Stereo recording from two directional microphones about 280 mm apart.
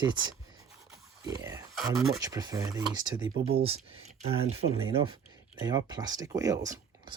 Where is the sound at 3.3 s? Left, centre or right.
Right.